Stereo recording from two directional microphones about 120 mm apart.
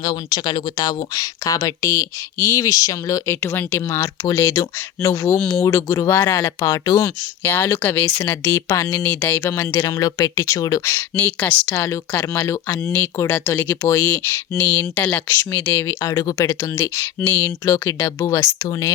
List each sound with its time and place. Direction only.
0.0 s speech: 35° left (ahead or behind); by 5.4 s 20° left (ahead or behind)
5.4 s speech: 10° left (ahead or behind)
5.6 s speech: 25° left (ahead or behind)